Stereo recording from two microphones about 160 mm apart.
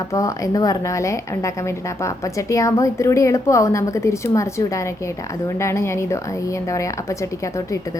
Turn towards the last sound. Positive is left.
turn(degrees=20)  # may be behind; listen again after turning